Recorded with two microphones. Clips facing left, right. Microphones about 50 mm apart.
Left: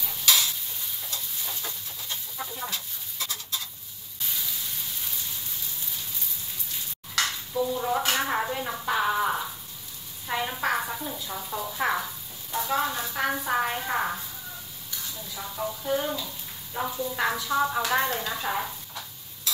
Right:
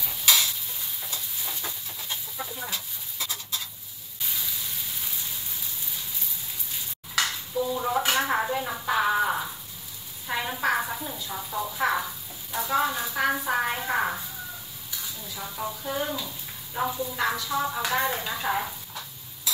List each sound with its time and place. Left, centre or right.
1.0 s stir: centre
7.2 s bathtub: centre
7.7 s a woman's voice: centre
15.2 s speech: centre
17.1 s speech: centre
18.0 s speech: centre
18.4 s stir: centre